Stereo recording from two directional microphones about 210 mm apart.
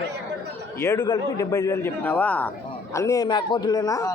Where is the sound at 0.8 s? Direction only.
15° left (ahead or behind).